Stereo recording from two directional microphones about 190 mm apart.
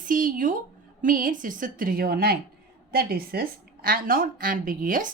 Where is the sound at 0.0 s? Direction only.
45° right (ahead or behind).